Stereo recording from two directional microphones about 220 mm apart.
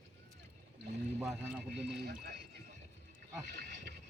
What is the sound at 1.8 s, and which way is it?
Speech, 50° right (ahead or behind).